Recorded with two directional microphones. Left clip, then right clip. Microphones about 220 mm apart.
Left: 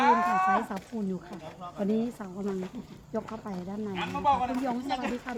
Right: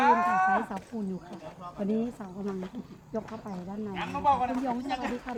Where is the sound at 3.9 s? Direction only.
Centre (ahead or behind).